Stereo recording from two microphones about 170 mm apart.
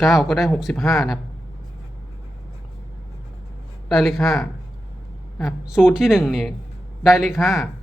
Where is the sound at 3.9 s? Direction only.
Centre (ahead or behind).